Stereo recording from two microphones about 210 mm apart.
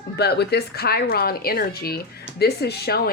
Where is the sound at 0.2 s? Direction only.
50° left (ahead or behind).